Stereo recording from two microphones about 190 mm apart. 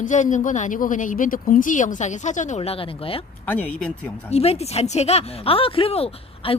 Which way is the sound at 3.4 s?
10° left (ahead or behind).